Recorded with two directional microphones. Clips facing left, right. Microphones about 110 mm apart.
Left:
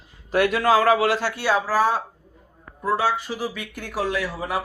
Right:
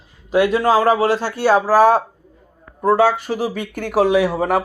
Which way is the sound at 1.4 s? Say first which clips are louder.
Right 10 dB; 40° right (ahead or behind).